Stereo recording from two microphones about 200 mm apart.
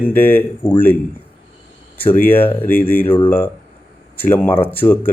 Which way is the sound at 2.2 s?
10° left (ahead or behind).